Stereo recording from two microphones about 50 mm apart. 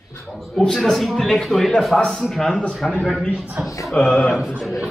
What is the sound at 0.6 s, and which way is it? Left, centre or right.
A man's voice, centre.